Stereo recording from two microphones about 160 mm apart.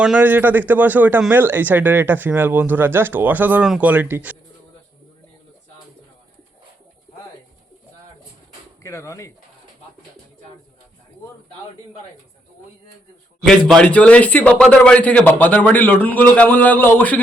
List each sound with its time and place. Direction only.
0.0 s speech: 5° right (ahead or behind)
8.8 s speech: 20° left (ahead or behind)
13.5 s speech: 5° left (ahead or behind)